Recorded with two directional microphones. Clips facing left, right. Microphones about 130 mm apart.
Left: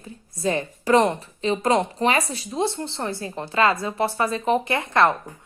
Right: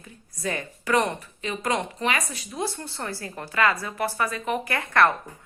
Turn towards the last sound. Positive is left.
turn(degrees=20)  # may be behind; listen again after turning